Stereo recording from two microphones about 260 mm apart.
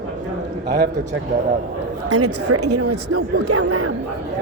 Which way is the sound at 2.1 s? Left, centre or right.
Right.